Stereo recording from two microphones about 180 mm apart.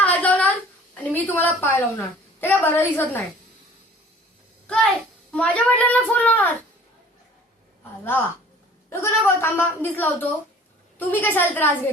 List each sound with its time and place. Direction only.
0.0 s a sound: 10° left (ahead or behind)
1.1 s a woman's voice: 10° left (ahead or behind)
4.6 s a child's voice: 5° left (ahead or behind)
8.9 s a woman's voice: 15° left (ahead or behind)